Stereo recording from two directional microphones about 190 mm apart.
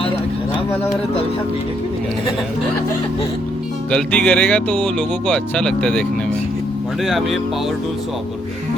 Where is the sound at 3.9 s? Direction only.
5° left (ahead or behind).